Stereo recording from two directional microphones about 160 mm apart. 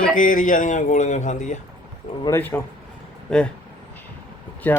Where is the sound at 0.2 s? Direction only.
55° left (ahead or behind).